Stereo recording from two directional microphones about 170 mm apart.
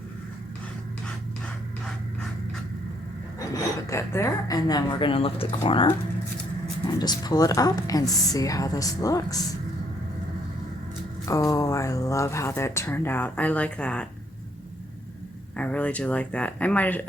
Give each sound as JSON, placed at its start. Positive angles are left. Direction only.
{"t": 3.8, "sound": "speech", "side_deg": 15}
{"t": 11.3, "sound": "speech", "side_deg": 20}
{"t": 15.5, "sound": "speech", "side_deg": 10}